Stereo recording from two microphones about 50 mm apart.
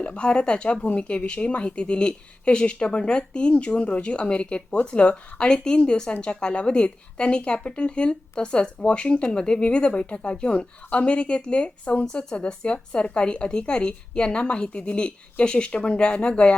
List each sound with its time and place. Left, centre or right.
0.0 s speech: left